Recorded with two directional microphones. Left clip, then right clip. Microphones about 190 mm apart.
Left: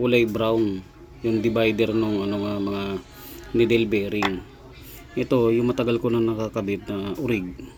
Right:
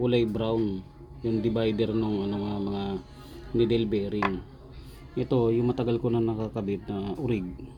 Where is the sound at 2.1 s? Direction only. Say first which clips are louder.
Left 5 dB; 25° left (ahead or behind).